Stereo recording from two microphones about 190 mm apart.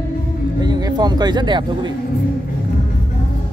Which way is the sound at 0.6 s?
20° right (ahead or behind).